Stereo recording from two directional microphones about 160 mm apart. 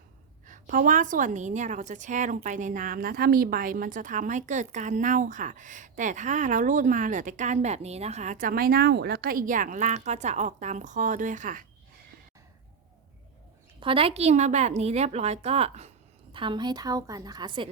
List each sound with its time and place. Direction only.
0.4 s a woman's voice: 55° right (ahead or behind)
13.7 s a woman's voice: 35° right (ahead or behind)
16.3 s a woman's voice: 30° right (ahead or behind)